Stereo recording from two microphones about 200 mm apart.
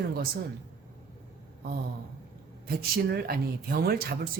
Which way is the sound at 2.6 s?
50° right (ahead or behind).